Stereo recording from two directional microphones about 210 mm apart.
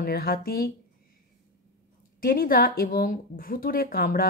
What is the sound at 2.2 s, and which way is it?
A woman's voice, 45° left (ahead or behind).